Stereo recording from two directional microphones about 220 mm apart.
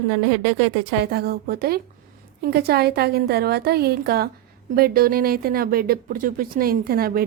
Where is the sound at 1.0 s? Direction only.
45° right (ahead or behind).